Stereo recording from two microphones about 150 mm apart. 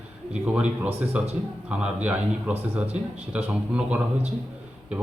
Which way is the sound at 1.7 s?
10° right (ahead or behind).